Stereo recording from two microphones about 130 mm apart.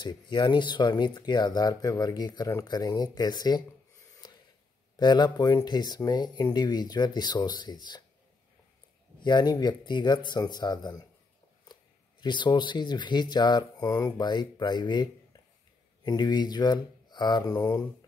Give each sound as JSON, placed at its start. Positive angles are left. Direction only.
{"t": 0.0, "sound": "speech", "side_deg": 35}
{"t": 9.2, "sound": "speech", "side_deg": 35}